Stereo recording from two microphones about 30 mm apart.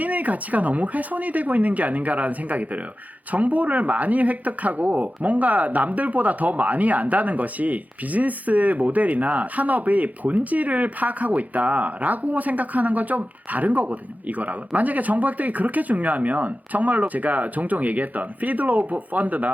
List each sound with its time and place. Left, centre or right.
0.0 s speech: right